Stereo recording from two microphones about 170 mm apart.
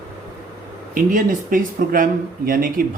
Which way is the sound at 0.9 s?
50° right (ahead or behind).